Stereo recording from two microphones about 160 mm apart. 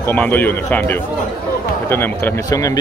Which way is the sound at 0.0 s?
10° left (ahead or behind).